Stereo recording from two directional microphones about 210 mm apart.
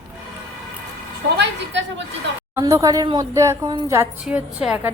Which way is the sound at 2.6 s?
15° right (ahead or behind).